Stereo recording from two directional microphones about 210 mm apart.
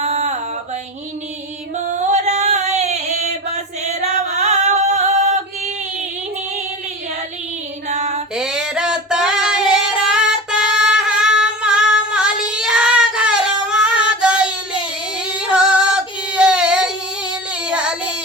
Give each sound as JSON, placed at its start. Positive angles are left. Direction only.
{"t": 0.0, "sound": "mantra", "side_deg": -30}
{"t": 2.0, "sound": "a sound", "side_deg": -35}
{"t": 4.0, "sound": "music", "side_deg": -30}
{"t": 7.9, "sound": "music", "side_deg": -30}
{"t": 8.4, "sound": "a sound", "side_deg": 0}
{"t": 10.2, "sound": "music", "side_deg": -5}
{"t": 12.1, "sound": "child singing", "side_deg": -5}
{"t": 15.3, "sound": "singing", "side_deg": -5}
{"t": 17.7, "sound": "child singing", "side_deg": -5}